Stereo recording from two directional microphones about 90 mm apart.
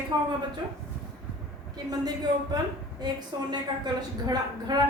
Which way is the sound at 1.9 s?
50° right (ahead or behind).